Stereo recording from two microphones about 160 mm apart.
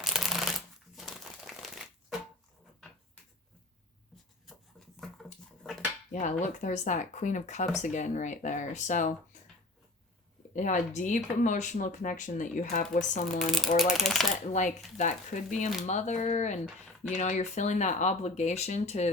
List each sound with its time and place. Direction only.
0.0 s shuffling cards: centre (ahead or behind)
0.9 s crumpling: centre (ahead or behind)
4.5 s a sound: centre (ahead or behind)
5.6 s dishes: centre (ahead or behind)
6.1 s speech: 50° left (ahead or behind)
10.5 s speech: 50° left (ahead or behind)
13.2 s speech: centre (ahead or behind)
14.9 s speech: 50° left (ahead or behind)